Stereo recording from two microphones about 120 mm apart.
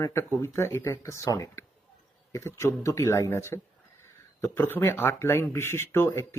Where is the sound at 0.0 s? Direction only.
25° left (ahead or behind).